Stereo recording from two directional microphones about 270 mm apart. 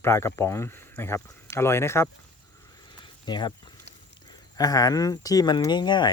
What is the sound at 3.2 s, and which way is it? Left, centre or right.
Speech, centre.